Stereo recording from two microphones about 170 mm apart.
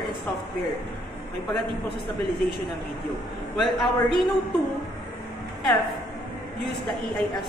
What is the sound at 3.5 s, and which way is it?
Speech, centre (ahead or behind).